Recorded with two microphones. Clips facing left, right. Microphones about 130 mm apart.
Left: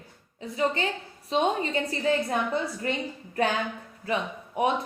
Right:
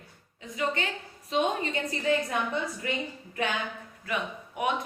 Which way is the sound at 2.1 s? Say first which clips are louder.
Left 1 dB; 35° left (ahead or behind).